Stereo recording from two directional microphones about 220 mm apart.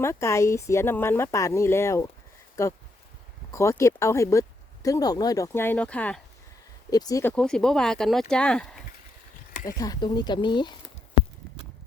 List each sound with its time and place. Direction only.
0.0 s speech: 15° left (ahead or behind)
6.9 s speech: 15° left (ahead or behind)
9.6 s speech: 15° left (ahead or behind)